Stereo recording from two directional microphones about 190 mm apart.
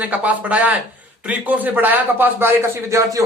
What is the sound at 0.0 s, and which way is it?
A man's voice, 5° right (ahead or behind).